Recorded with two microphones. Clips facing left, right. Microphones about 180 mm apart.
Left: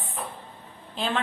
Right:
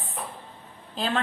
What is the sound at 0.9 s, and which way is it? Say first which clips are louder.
Speech: right 1 dB; 40° right (ahead or behind).